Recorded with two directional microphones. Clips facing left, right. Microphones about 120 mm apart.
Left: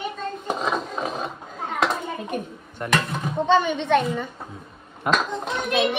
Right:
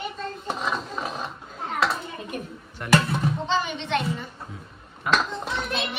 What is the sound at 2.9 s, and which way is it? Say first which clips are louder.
Speech: right 3 dB; centre (ahead or behind).